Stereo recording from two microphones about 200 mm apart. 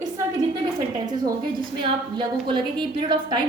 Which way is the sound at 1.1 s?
20° right (ahead or behind).